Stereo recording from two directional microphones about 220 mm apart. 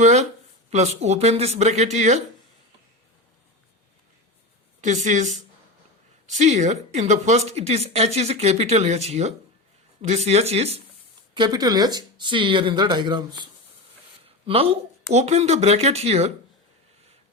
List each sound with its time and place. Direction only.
0.0 s speech: 30° right (ahead or behind)
4.8 s a woman's voice: 30° right (ahead or behind)